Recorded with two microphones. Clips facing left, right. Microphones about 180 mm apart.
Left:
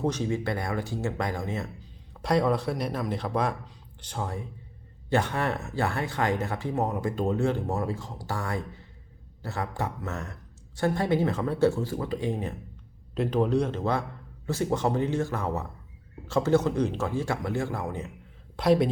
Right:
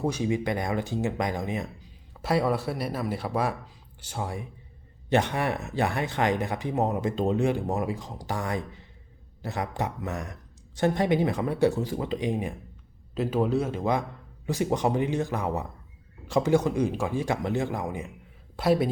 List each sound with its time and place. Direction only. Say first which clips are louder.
0.0 s speech: right 1 dB; 10° right (ahead or behind)
2.2 s speech: left 1 dB; 5° right (ahead or behind)
5.0 s speech: right 2 dB; 20° right (ahead or behind)
13.1 s speech: left 1 dB; 5° right (ahead or behind)